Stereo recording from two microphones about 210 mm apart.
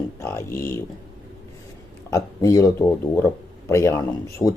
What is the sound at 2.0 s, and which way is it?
Speech, 15° left (ahead or behind).